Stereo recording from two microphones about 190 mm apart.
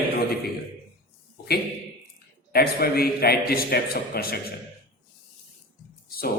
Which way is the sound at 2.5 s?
55° left (ahead or behind).